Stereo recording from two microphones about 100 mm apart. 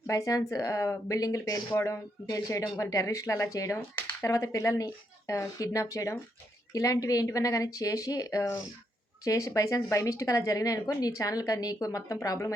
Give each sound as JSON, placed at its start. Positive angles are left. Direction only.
{"t": 0.1, "sound": "speech", "side_deg": 35}